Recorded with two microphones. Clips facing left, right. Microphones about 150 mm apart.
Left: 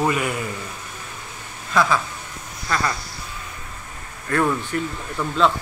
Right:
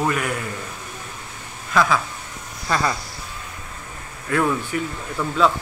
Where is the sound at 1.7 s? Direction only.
Centre (ahead or behind).